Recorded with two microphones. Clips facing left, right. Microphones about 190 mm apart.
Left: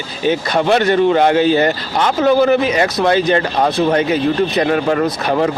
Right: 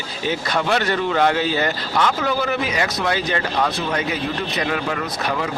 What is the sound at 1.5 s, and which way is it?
Speech, 50° left (ahead or behind).